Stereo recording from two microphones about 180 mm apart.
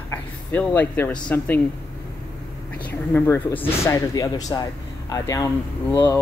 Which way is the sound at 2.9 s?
10° left (ahead or behind).